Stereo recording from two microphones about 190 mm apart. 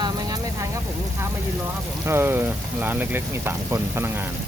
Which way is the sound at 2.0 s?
10° right (ahead or behind).